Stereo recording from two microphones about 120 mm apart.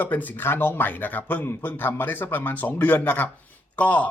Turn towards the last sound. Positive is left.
turn(degrees=10)  # may be behind; listen again after turning